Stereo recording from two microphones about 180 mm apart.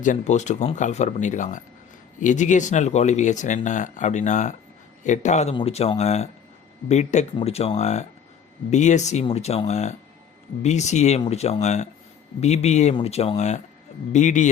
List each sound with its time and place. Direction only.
0.0 s speech: 45° left (ahead or behind)